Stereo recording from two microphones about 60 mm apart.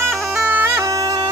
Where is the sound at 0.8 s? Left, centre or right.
Right.